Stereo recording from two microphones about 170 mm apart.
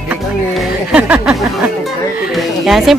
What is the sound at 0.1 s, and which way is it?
Speech, 10° right (ahead or behind).